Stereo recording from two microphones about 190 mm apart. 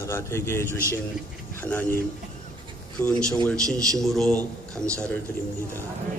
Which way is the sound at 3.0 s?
5° left (ahead or behind).